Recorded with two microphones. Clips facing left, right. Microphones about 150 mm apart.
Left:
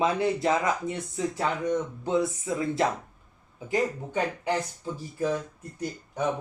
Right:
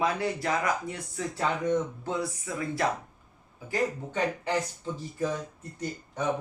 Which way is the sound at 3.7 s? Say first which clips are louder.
Left 2 dB; 10° left (ahead or behind).